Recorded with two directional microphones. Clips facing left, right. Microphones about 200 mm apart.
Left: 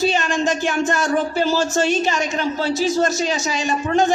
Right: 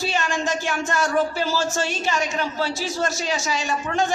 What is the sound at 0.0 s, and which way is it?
Speech, 20° left (ahead or behind).